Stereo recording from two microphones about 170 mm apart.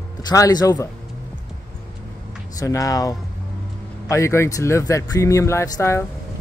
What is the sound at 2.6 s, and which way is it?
Speech, 20° left (ahead or behind).